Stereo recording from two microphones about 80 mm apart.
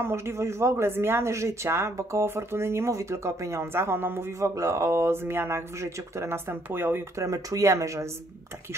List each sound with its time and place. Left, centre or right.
0.0 s speech: right
4.4 s speech: right
7.2 s speech: right